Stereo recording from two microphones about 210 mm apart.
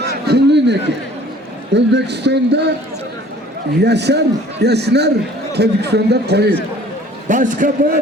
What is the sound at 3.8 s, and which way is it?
A man's voice, 55° right (ahead or behind).